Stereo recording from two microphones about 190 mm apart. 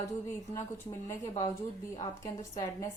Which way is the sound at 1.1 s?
15° left (ahead or behind).